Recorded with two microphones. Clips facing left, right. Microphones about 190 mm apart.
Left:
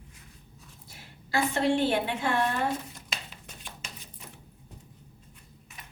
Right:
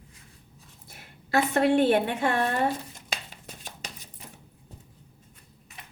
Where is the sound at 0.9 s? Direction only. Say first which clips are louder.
Right 5 dB; 55° right (ahead or behind).